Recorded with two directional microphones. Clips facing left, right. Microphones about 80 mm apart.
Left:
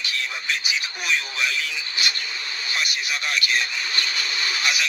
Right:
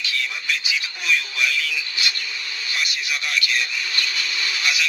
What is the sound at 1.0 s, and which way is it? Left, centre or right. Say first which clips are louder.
Speech: right 2 dB; left.